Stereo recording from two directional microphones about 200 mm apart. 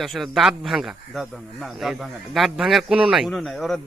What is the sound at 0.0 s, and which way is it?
Speech, centre (ahead or behind).